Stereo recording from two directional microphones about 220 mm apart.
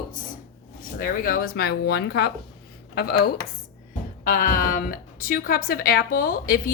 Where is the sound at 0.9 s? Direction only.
40° left (ahead or behind).